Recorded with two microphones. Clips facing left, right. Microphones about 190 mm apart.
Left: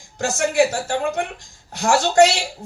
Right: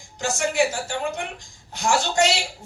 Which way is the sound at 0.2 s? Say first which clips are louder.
Left 4 dB; 65° left (ahead or behind).